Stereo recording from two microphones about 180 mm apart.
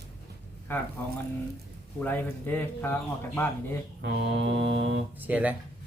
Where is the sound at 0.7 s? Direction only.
10° left (ahead or behind).